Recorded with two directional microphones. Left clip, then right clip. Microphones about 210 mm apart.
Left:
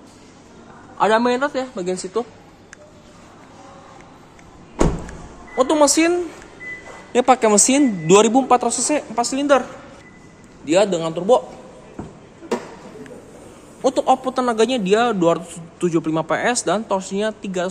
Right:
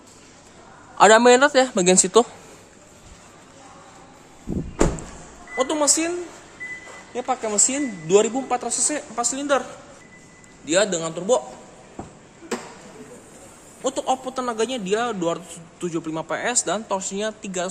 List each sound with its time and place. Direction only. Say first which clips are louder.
0.9 s speech: right 4 dB; 25° right (ahead or behind)
5.6 s a woman's voice: left 6 dB; 20° left (ahead or behind)
7.1 s a woman's voice: left 11 dB; 40° left (ahead or behind); by 9.7 s 10° left (ahead or behind)
10.6 s a man's voice: left 4 dB; centre (ahead or behind)
13.8 s a man's voice: left 7 dB; 15° left (ahead or behind)